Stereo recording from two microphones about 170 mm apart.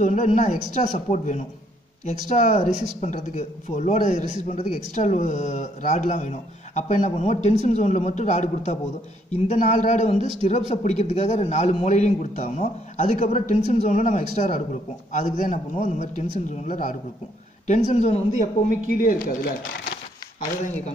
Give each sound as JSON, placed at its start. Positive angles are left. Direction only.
{"t": 0.0, "sound": "speech", "side_deg": 50}
{"t": 20.3, "sound": "speech", "side_deg": 40}